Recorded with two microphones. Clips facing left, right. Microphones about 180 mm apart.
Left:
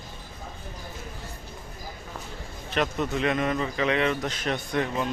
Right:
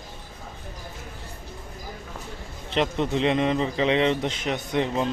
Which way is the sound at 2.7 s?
25° right (ahead or behind).